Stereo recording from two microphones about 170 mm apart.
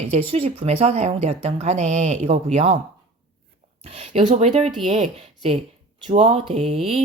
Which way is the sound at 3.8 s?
35° right (ahead or behind).